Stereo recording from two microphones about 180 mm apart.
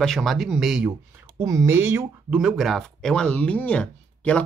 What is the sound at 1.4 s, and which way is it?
Speech, 15° right (ahead or behind).